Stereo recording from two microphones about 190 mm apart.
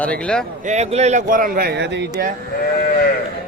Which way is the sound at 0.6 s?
35° right (ahead or behind).